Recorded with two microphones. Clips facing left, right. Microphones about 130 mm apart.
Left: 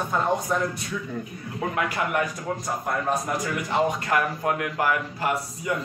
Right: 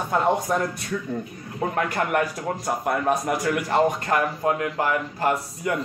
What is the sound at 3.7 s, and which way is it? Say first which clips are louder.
Speech: right 2 dB; 45° right (ahead or behind).